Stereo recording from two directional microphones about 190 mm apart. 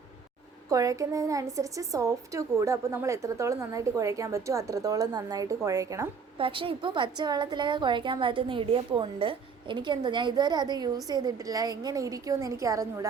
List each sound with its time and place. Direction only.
0.7 s a woman's voice: 15° right (ahead or behind)
6.4 s a woman's voice: 30° right (ahead or behind)